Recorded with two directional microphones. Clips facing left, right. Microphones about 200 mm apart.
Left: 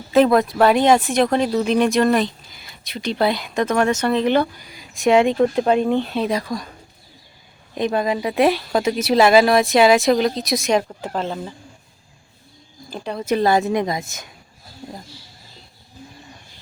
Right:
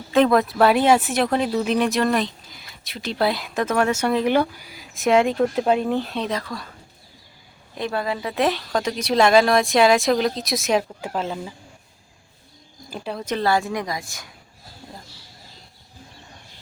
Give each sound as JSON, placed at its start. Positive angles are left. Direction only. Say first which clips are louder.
{"t": 0.1, "sound": "speech", "louder": "left 2 dB", "side_deg": 5}
{"t": 7.8, "sound": "speech", "louder": "left 5 dB", "side_deg": 20}
{"t": 12.9, "sound": "speech", "louder": "left 2 dB", "side_deg": -5}
{"t": 13.2, "sound": "a woman's voice", "louder": "left 5 dB", "side_deg": 15}